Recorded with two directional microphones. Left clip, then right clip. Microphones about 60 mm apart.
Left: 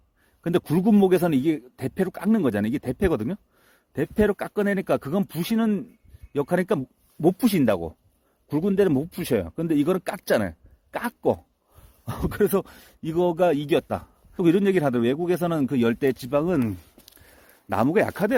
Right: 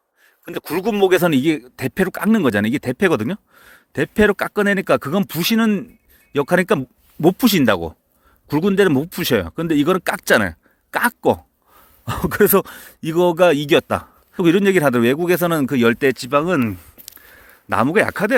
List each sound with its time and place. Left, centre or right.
0.6 s a man's voice: centre
6.3 s a man's voice: centre
14.9 s speech: centre
16.1 s speech: left
17.7 s a man's voice: left